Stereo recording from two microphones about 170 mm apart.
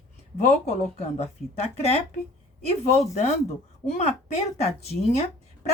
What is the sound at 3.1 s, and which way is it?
Speech, 40° left (ahead or behind).